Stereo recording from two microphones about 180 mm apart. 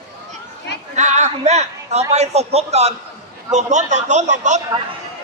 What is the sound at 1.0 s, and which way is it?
A woman's voice, 40° right (ahead or behind).